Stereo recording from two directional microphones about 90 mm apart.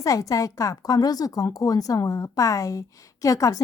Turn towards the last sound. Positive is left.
turn(degrees=40)  # may be behind; listen again after turning